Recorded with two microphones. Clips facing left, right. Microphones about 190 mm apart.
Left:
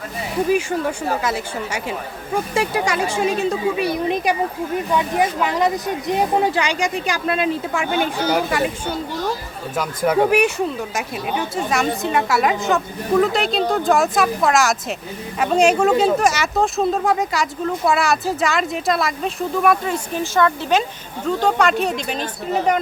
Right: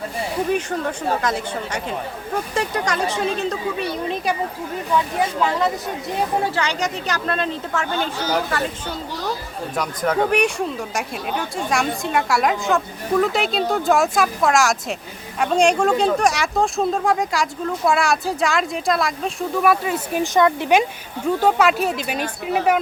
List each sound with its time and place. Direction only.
0.5 s speech: 5° left (ahead or behind)
9.7 s speech: 5° left (ahead or behind)